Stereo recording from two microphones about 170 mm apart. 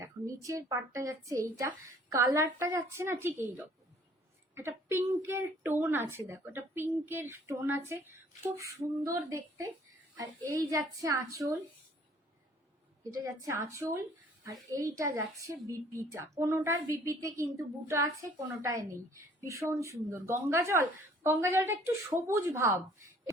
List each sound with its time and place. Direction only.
0.0 s speech: 20° right (ahead or behind)
4.5 s a woman's voice: 15° right (ahead or behind)
13.0 s a woman's voice: 20° right (ahead or behind)